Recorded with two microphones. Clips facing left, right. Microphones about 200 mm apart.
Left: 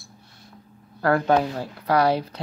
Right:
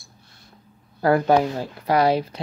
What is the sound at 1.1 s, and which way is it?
Speech, 15° right (ahead or behind).